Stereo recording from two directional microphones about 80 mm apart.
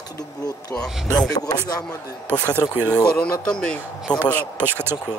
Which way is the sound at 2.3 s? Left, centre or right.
Centre.